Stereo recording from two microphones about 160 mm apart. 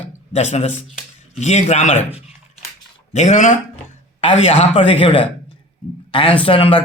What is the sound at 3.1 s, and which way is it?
A man's voice, 50° left (ahead or behind).